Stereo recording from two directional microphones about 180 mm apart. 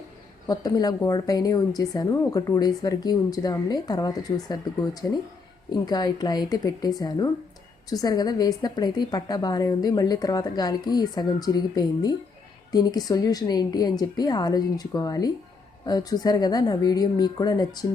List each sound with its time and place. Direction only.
0.4 s a woman's voice: 20° left (ahead or behind)